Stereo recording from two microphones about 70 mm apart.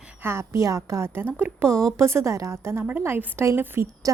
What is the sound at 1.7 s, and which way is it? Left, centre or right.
Speech, centre.